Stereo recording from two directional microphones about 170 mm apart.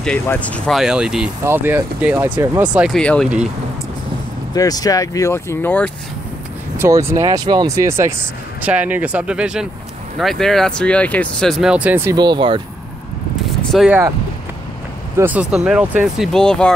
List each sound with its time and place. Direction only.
0.0 s speech: 5° left (ahead or behind)
3.0 s speech: 5° left (ahead or behind)
4.6 s speech: 20° left (ahead or behind)
6.8 s speech: 15° right (ahead or behind)
13.6 s speech: centre (ahead or behind)
15.1 s speech: 10° right (ahead or behind)